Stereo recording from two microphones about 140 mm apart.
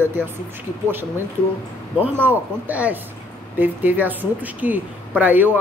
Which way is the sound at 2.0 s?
15° right (ahead or behind).